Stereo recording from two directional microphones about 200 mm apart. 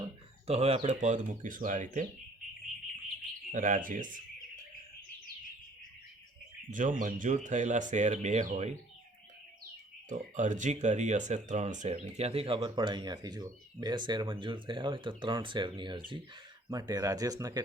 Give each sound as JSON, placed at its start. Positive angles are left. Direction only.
{"t": 0.4, "sound": "speech", "side_deg": -30}
{"t": 3.5, "sound": "speech", "side_deg": -40}
{"t": 6.7, "sound": "speech", "side_deg": -40}
{"t": 10.1, "sound": "speech", "side_deg": -40}